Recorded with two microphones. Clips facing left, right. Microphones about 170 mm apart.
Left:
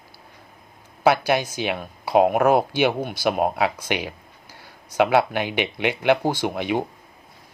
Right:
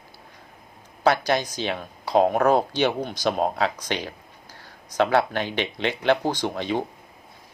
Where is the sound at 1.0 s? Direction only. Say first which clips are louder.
Left 2 dB; 10° left (ahead or behind).